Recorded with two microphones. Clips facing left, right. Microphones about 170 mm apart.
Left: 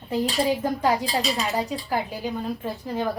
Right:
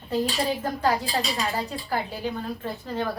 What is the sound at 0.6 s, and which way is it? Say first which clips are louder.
A woman's voice: left 2 dB; 15° left (ahead or behind).